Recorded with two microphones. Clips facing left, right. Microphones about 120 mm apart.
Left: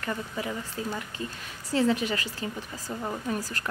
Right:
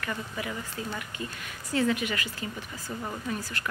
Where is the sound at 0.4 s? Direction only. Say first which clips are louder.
Left 2 dB; 30° left (ahead or behind).